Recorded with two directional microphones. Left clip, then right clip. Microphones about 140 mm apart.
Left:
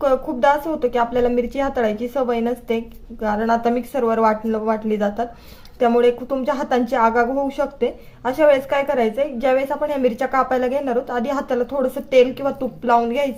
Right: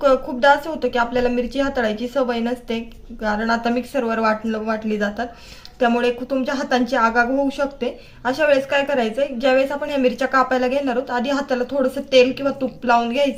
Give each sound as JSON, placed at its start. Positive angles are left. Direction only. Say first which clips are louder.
{"t": 0.0, "sound": "a woman's voice", "louder": "right 1 dB", "side_deg": 45}